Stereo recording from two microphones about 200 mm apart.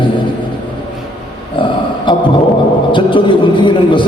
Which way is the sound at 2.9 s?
25° left (ahead or behind).